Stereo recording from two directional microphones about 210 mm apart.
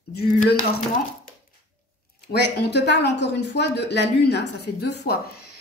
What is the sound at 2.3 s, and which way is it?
A woman's voice, 55° left (ahead or behind).